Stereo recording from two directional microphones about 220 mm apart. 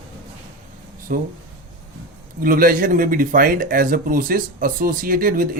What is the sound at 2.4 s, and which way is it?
Speech, 40° right (ahead or behind).